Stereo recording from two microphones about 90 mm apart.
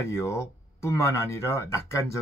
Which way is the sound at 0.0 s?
30° left (ahead or behind).